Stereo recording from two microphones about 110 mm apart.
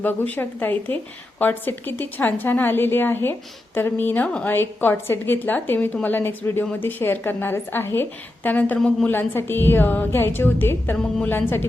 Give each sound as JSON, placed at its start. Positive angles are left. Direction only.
{"t": 0.0, "sound": "a woman's voice", "side_deg": 15}